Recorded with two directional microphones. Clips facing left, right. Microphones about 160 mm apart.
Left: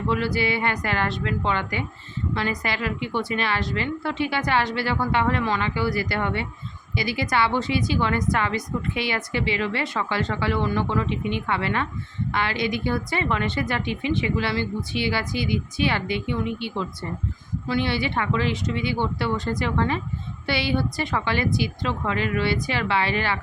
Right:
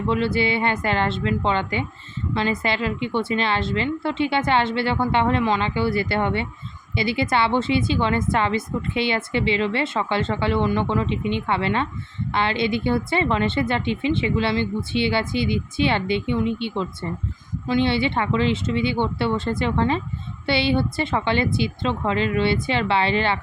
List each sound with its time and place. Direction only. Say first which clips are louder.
0.1 s a woman's voice: right 3 dB; 25° right (ahead or behind)